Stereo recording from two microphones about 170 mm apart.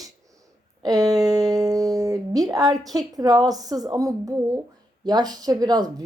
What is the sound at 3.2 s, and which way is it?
A woman's voice, 20° right (ahead or behind).